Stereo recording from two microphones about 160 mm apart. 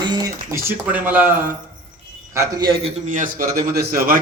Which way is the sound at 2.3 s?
25° right (ahead or behind).